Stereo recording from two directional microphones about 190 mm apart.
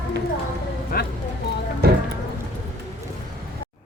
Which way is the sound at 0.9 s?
50° left (ahead or behind).